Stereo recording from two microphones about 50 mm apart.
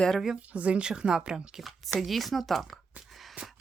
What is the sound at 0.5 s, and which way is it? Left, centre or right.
Speech, right.